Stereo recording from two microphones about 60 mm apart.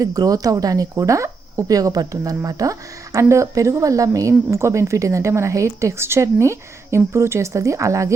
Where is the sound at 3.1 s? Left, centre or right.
Right.